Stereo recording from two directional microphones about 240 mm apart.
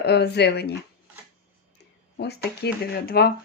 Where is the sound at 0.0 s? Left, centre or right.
Left.